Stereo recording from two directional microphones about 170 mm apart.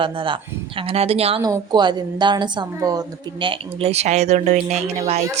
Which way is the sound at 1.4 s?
25° right (ahead or behind).